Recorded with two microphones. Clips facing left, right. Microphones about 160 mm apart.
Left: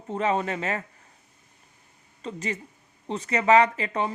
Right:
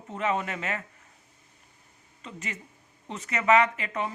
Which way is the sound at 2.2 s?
35° left (ahead or behind).